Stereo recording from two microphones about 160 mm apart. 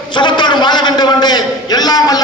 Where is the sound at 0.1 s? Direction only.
30° left (ahead or behind).